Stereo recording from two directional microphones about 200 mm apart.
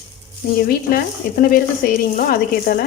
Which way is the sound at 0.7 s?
45° left (ahead or behind).